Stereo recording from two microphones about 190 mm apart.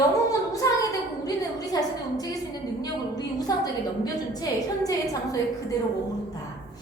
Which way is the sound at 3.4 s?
20° left (ahead or behind).